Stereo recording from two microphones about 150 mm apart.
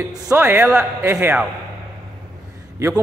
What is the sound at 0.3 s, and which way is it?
A man's voice, 15° right (ahead or behind).